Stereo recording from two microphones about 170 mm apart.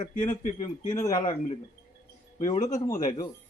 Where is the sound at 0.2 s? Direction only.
25° left (ahead or behind).